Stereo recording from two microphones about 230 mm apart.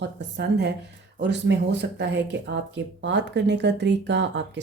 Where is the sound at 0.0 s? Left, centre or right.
Right.